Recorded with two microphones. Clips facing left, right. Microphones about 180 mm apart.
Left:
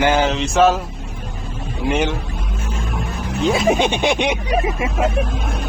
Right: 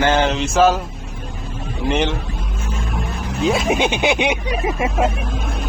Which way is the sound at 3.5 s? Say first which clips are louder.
Left 2 dB; centre (ahead or behind).